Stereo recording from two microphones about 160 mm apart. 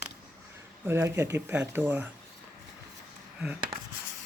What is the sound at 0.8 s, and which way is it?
Speech, 15° right (ahead or behind).